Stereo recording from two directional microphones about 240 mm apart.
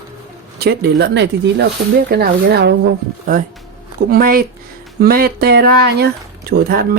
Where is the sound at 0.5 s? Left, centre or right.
Right.